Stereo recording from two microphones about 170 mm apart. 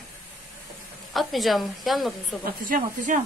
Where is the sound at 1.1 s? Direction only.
Centre (ahead or behind).